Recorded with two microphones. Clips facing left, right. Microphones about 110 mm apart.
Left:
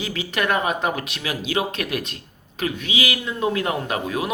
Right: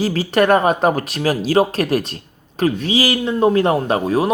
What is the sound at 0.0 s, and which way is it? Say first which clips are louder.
A man's voice: right 9 dB; 35° right (ahead or behind).